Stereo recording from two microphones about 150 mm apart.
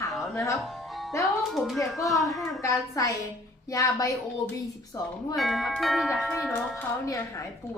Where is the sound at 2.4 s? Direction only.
20° left (ahead or behind).